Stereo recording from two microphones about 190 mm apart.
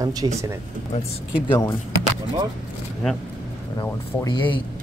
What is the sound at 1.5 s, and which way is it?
Speech, 20° left (ahead or behind).